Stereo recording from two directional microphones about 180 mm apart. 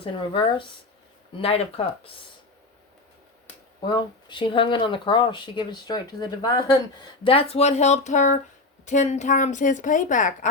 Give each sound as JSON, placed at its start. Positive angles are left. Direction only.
{"t": 0.0, "sound": "speech", "side_deg": 30}
{"t": 3.8, "sound": "speech", "side_deg": 25}
{"t": 7.3, "sound": "a woman's voice", "side_deg": 30}